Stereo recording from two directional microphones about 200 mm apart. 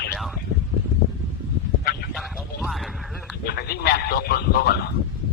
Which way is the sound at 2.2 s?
Centre (ahead or behind).